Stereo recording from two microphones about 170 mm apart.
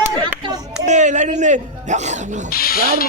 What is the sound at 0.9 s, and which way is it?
Speech, 45° right (ahead or behind).